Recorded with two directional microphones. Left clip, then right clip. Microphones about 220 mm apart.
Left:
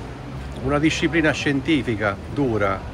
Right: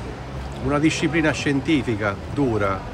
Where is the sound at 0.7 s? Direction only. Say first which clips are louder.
Even; 5° right (ahead or behind).